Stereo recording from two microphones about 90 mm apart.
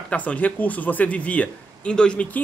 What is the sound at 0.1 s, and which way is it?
Speech, 15° left (ahead or behind).